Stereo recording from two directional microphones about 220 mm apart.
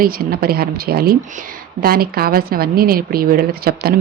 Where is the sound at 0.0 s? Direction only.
45° right (ahead or behind).